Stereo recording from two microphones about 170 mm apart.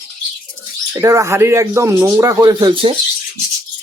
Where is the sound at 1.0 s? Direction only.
15° right (ahead or behind).